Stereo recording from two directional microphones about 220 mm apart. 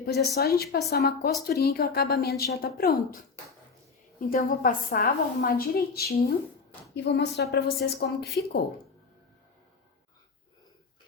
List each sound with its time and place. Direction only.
0.0 s a woman's voice: 45° left (ahead or behind)
4.3 s a woman's voice: 40° left (ahead or behind)